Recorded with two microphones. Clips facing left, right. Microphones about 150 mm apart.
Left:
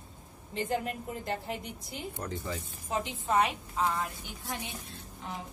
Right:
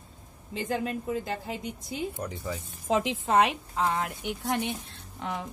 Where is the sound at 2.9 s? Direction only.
90° right; by 5.4 s 75° right (ahead or behind).